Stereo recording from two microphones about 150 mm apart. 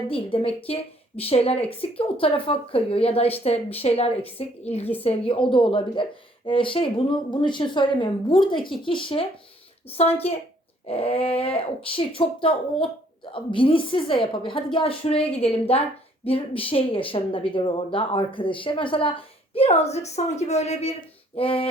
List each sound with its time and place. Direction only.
0.1 s speech: 35° left (ahead or behind)